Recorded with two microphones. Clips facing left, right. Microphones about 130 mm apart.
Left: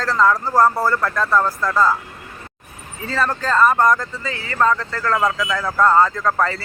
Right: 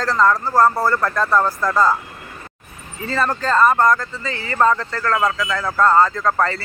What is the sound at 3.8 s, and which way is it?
Speech, 15° left (ahead or behind).